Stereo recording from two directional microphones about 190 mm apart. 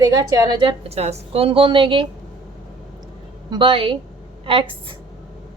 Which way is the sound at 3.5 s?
25° right (ahead or behind).